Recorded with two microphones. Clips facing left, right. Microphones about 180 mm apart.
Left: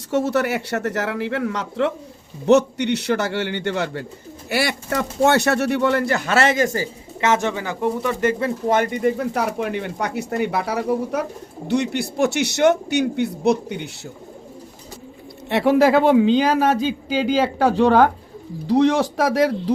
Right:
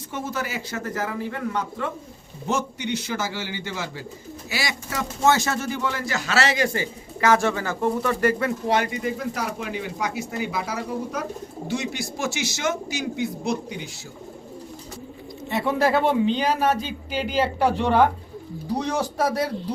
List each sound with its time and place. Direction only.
0.1 s a man's voice: 70° left (ahead or behind); by 6.8 s 50° left (ahead or behind)
7.2 s speech: 20° left (ahead or behind)
8.6 s speech: 50° left (ahead or behind)
15.4 s a man's voice: 80° left
17.6 s a man's voice: 90° left